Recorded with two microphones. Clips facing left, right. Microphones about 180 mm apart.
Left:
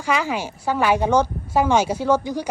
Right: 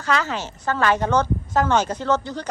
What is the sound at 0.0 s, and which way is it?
A woman's voice, 10° left (ahead or behind).